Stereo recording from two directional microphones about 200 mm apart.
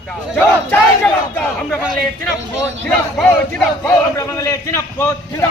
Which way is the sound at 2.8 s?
10° left (ahead or behind).